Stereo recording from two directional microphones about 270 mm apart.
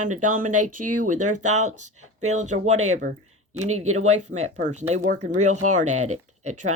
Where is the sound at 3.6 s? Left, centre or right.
Right.